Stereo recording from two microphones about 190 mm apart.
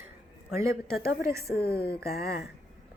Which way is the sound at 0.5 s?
15° right (ahead or behind).